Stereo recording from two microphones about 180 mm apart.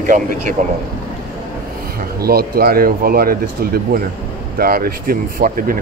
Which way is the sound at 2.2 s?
60° right (ahead or behind).